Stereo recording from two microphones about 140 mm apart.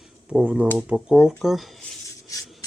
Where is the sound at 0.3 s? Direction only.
10° right (ahead or behind).